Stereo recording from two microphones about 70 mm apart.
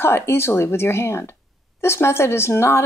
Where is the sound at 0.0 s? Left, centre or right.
Left.